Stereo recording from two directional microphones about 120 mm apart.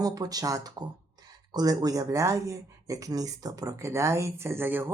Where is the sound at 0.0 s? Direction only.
30° right (ahead or behind).